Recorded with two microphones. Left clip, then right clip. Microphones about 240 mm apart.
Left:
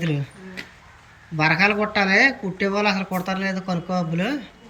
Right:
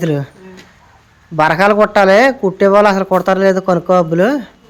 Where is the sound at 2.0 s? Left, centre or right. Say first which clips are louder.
Right 7 dB; centre.